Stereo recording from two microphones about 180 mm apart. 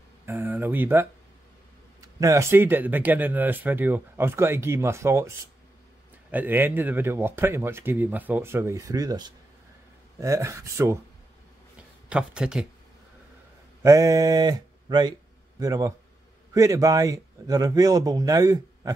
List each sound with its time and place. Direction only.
0.3 s speech: 10° right (ahead or behind)
6.3 s speech: 10° right (ahead or behind)
12.1 s speech: 5° right (ahead or behind)
13.8 s mantra: 20° right (ahead or behind)
15.6 s a man's voice: 20° right (ahead or behind)